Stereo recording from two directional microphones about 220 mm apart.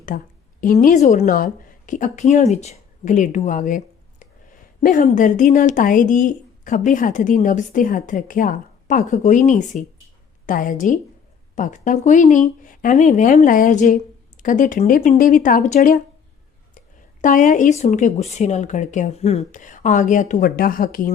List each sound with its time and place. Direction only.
0.1 s speech: 35° left (ahead or behind)